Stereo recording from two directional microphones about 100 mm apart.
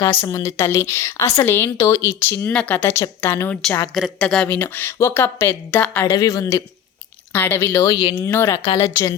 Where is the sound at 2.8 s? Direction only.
25° left (ahead or behind).